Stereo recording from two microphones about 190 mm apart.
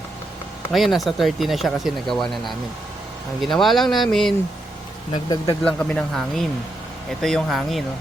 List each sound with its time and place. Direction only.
0.7 s speech: centre (ahead or behind)
5.1 s speech: 25° left (ahead or behind)
5.6 s speech: 5° left (ahead or behind)